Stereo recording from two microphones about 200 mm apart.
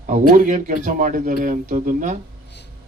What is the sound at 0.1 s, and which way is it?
Speech, 40° right (ahead or behind).